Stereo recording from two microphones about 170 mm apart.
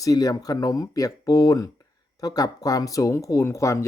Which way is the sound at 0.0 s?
20° left (ahead or behind).